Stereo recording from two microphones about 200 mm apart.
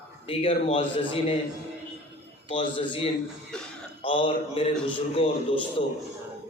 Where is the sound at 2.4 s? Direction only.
25° left (ahead or behind).